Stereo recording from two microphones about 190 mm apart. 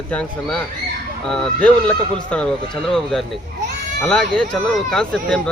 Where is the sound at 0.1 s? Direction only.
5° left (ahead or behind).